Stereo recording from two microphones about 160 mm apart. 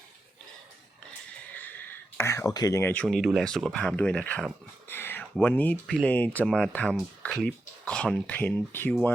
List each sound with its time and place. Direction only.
1.5 s speech: 10° left (ahead or behind)